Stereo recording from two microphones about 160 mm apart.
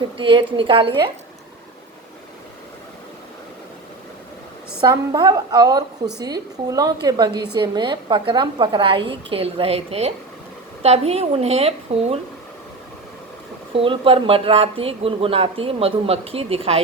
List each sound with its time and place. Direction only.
0.2 s speech: 30° right (ahead or behind)
4.8 s a woman's voice: 25° right (ahead or behind)
13.7 s speech: 35° right (ahead or behind)